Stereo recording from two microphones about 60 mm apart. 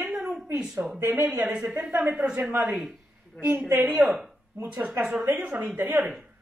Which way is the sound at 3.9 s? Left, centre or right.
Centre.